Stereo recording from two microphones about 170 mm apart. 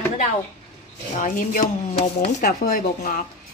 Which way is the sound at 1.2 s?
50° left (ahead or behind).